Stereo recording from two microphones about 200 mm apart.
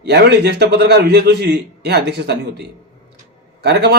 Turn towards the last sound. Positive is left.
turn(degrees=-55)  # may be behind; listen again after turning